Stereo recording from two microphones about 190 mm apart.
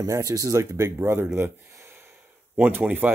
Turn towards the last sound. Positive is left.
turn(degrees=-10)  # may be behind; listen again after turning